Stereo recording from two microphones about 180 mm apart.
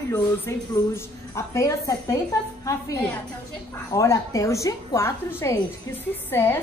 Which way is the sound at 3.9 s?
15° left (ahead or behind).